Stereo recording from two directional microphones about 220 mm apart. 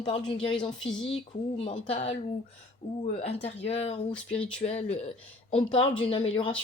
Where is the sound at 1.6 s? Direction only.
25° left (ahead or behind).